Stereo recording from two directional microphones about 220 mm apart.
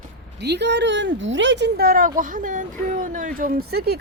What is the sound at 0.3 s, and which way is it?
Speech, 50° right (ahead or behind).